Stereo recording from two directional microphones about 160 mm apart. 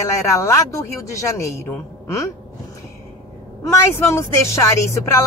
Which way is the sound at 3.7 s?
15° left (ahead or behind).